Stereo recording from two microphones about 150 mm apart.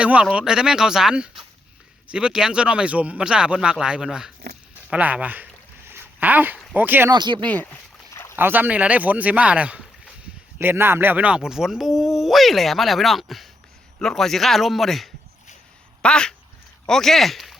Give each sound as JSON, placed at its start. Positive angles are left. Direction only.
{"t": 0.0, "sound": "speech", "side_deg": -5}
{"t": 5.9, "sound": "a sound", "side_deg": -10}
{"t": 6.7, "sound": "speech", "side_deg": -10}
{"t": 7.1, "sound": "speech", "side_deg": -30}
{"t": 7.5, "sound": "rowboat", "side_deg": 10}
{"t": 8.4, "sound": "speech", "side_deg": -15}